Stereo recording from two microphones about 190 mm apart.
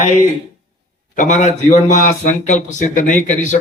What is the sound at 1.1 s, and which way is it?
A man's voice, 40° left (ahead or behind).